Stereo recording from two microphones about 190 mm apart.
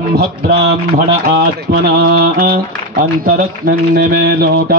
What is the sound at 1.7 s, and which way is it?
Mantra, 45° right (ahead or behind).